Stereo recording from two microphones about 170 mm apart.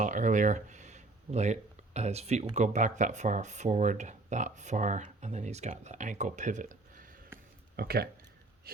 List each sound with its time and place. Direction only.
0.0 s speech: 50° right (ahead or behind)
7.8 s speech: 65° right (ahead or behind)